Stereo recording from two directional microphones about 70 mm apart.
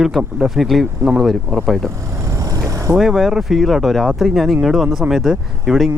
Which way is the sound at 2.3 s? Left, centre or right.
Right.